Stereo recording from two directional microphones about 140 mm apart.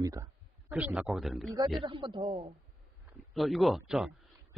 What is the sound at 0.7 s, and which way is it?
Speech, 10° right (ahead or behind).